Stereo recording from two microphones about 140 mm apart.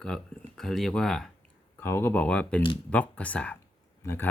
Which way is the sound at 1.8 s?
15° left (ahead or behind).